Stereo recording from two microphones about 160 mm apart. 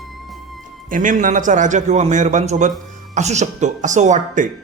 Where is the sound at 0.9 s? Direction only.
55° right (ahead or behind).